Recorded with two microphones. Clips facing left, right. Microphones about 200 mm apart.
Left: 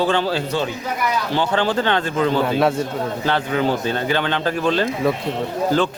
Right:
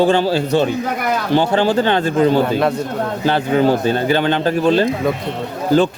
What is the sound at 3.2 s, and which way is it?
Speech, 35° right (ahead or behind).